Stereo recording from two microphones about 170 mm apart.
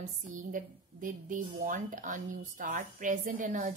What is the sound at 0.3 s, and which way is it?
A woman's voice, 50° right (ahead or behind).